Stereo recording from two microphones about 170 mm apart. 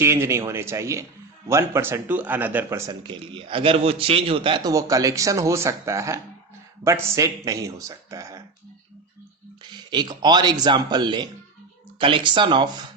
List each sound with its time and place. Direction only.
0.0 s speech: 15° right (ahead or behind)
3.0 s a man's voice: 30° right (ahead or behind)
9.6 s a man's voice: 25° right (ahead or behind)